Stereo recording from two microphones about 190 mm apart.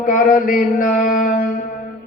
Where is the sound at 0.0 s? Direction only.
45° left (ahead or behind).